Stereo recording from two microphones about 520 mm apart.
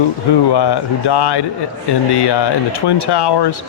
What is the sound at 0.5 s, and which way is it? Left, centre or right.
Speech, left.